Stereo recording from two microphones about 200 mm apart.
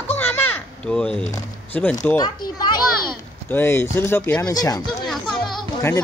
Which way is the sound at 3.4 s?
10° left (ahead or behind).